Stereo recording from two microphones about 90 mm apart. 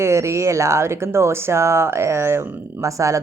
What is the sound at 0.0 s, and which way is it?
Speech, 35° right (ahead or behind).